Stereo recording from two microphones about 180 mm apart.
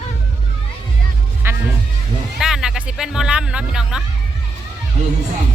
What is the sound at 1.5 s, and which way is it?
Music, 15° right (ahead or behind).